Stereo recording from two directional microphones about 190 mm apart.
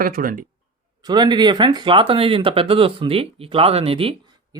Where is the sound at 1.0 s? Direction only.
20° right (ahead or behind).